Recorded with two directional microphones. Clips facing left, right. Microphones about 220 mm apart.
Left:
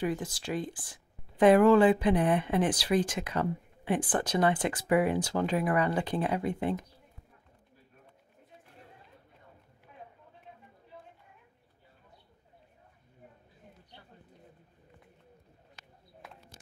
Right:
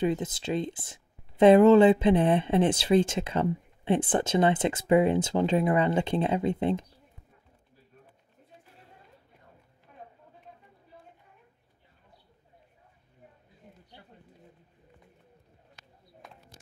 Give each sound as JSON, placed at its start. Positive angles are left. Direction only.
{"t": 0.0, "sound": "speech", "side_deg": -20}